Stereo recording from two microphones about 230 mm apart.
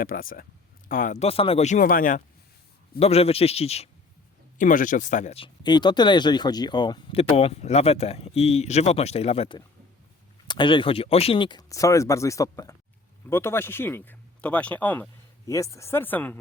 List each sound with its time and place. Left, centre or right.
0.0 s speech: left
3.0 s speech: left; by 16.4 s centre